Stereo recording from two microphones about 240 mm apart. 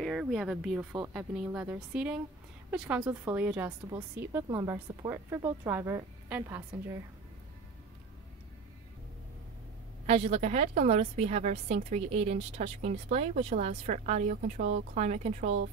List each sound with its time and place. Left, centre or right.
0.0 s speech: centre
10.0 s a woman's voice: right